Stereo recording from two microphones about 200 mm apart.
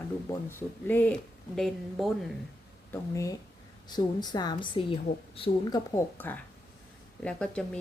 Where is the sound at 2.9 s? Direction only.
15° left (ahead or behind).